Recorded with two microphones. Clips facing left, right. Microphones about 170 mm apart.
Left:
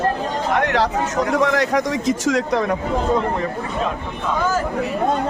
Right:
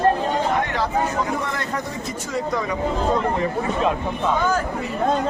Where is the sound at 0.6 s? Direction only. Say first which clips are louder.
Left 3 dB; 75° left (ahead or behind).